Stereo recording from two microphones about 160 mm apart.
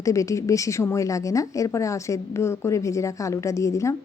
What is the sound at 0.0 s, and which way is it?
Speech, 20° left (ahead or behind).